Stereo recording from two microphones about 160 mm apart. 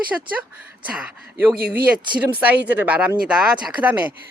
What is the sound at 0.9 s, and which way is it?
Speech, 10° right (ahead or behind).